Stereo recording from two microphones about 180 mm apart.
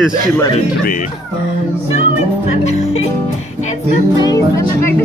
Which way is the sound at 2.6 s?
35° left (ahead or behind).